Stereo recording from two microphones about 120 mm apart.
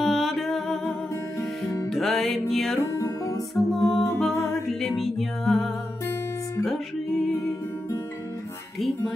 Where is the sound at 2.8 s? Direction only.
25° left (ahead or behind).